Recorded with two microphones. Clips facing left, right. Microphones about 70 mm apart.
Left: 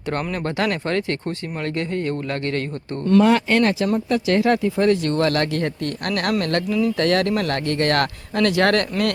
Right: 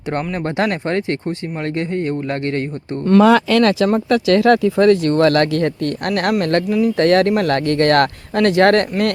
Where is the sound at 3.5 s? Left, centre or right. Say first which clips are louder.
Right 4 dB; right.